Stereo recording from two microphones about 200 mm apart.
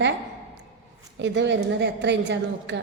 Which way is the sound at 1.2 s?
60° right (ahead or behind).